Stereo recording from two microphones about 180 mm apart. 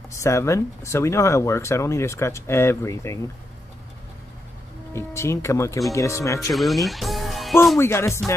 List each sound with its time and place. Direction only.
0.1 s speech: 15° left (ahead or behind)
4.9 s speech: 15° left (ahead or behind)
6.5 s speech: centre (ahead or behind)
7.8 s speech: 15° left (ahead or behind)